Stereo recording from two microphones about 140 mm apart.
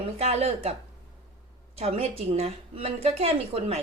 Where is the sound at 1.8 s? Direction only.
45° right (ahead or behind).